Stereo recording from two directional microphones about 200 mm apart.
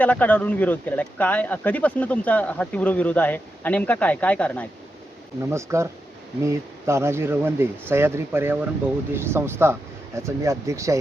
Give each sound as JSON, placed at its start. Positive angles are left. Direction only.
{"t": 0.0, "sound": "speech", "side_deg": 5}
{"t": 5.5, "sound": "speech", "side_deg": -15}